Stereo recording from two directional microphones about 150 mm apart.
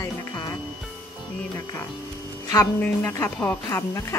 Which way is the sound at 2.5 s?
15° left (ahead or behind).